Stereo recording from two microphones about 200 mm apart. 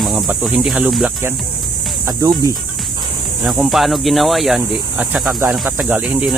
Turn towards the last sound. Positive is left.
turn(degrees=-5)  # may be behind; listen again after turning